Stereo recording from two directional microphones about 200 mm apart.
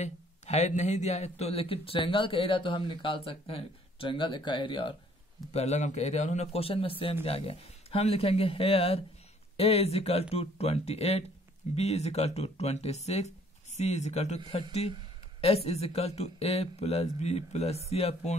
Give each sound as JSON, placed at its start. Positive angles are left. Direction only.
{"t": 0.0, "sound": "a man's voice", "side_deg": 35}
{"t": 15.4, "sound": "speech", "side_deg": 30}